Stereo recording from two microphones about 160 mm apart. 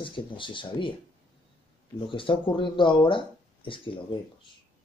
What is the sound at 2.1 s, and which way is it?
Speech, 30° left (ahead or behind).